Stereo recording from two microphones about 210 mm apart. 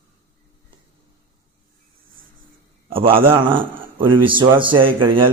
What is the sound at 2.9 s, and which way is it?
A man's voice, 25° right (ahead or behind).